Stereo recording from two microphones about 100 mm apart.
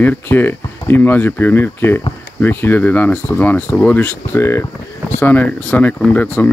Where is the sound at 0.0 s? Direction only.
20° left (ahead or behind).